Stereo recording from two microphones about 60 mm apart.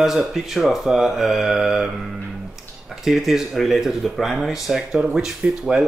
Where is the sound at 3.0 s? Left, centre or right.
Centre.